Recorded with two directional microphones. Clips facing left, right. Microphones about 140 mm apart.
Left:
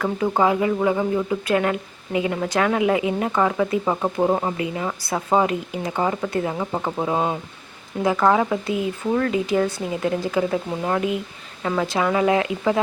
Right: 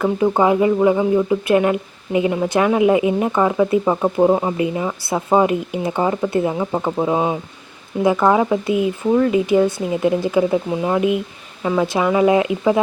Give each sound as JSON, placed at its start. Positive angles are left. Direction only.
{"t": 0.0, "sound": "speech", "side_deg": -20}